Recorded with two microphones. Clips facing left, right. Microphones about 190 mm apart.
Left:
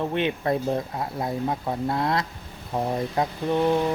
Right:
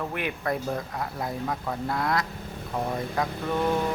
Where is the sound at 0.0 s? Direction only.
25° left (ahead or behind).